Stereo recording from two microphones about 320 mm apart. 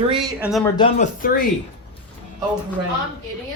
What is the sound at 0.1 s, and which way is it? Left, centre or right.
Speech, centre.